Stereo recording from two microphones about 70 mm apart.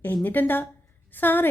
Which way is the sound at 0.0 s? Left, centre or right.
Left.